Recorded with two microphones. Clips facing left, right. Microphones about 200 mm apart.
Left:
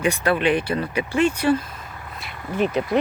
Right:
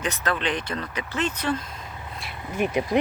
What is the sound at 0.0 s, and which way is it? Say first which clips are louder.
Speech: left 7 dB; 10° left (ahead or behind).